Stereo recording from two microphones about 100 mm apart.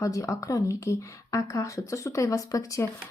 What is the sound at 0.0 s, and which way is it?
Speech, 35° left (ahead or behind).